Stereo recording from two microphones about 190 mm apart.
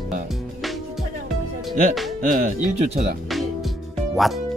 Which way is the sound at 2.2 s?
45° right (ahead or behind).